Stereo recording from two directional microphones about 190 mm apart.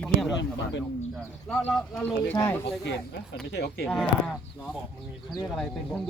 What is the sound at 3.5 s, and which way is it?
Speech, 65° left (ahead or behind).